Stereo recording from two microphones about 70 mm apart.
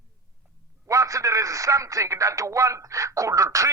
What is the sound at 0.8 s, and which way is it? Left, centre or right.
A man's voice, right.